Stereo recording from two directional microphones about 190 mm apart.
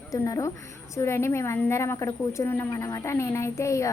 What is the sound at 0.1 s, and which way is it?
A woman's voice, 15° left (ahead or behind).